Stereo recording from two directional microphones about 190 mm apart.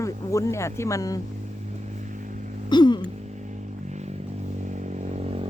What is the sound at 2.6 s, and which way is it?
Music, 25° left (ahead or behind).